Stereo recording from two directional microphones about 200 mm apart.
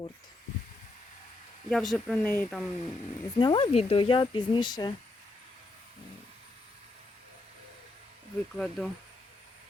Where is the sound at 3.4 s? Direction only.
25° left (ahead or behind).